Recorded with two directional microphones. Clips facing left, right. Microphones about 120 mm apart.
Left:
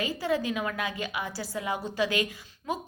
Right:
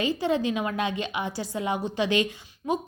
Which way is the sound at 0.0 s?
25° right (ahead or behind).